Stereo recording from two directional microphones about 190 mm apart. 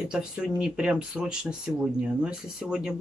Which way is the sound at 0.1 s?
5° right (ahead or behind).